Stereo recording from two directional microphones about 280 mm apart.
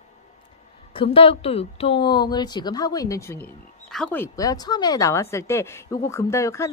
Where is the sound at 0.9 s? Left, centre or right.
Centre.